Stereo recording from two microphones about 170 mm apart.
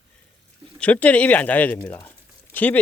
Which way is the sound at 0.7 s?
10° left (ahead or behind).